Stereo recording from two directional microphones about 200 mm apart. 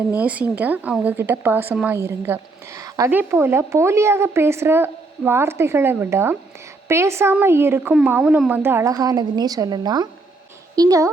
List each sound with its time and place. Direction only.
0.2 s a woman's voice: 5° right (ahead or behind)